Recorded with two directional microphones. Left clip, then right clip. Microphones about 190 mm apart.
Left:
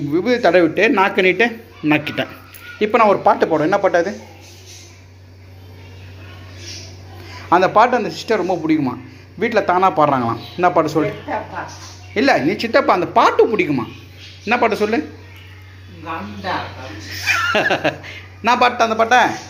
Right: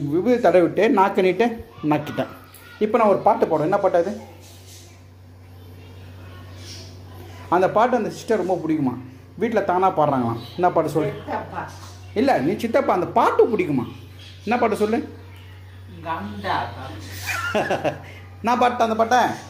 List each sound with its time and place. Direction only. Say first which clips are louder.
0.1 s a man's voice: left 2 dB; 15° right (ahead or behind)
7.4 s a man's voice: left 5 dB; 10° right (ahead or behind)
12.1 s a man's voice: left 4 dB; 10° right (ahead or behind)
17.2 s a man's voice: left 7 dB; 10° right (ahead or behind)